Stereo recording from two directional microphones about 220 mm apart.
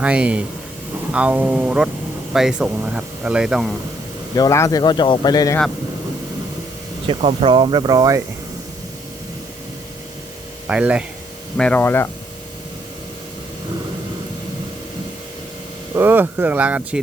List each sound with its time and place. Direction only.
0.0 s speech: 5° right (ahead or behind)
4.4 s speech: 15° left (ahead or behind)
7.1 s speech: 25° right (ahead or behind)
10.7 s speech: 5° right (ahead or behind)
11.5 s speech: 5° left (ahead or behind)
16.0 s speech: 10° right (ahead or behind)